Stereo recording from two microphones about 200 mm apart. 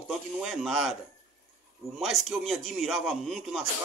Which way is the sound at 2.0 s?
Centre (ahead or behind).